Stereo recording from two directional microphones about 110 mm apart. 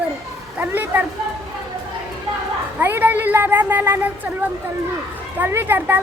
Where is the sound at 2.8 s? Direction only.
20° right (ahead or behind).